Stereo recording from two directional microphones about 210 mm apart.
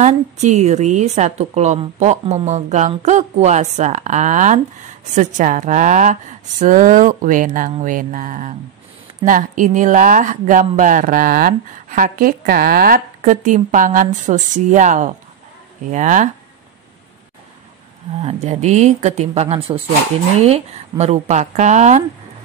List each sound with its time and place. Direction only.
0.0 s a woman's voice: 35° right (ahead or behind)
18.2 s a woman's voice: 30° right (ahead or behind)